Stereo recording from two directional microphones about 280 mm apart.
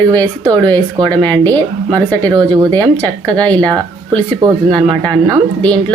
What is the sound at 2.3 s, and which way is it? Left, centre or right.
Speech, centre.